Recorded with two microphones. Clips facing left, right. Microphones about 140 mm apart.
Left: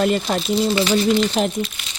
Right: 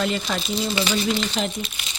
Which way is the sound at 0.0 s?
40° left (ahead or behind).